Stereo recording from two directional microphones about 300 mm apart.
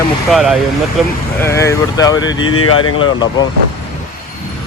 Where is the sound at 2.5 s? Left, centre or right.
Left.